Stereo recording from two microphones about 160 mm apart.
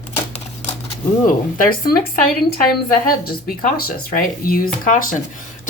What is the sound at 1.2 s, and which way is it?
Speech, 65° left (ahead or behind).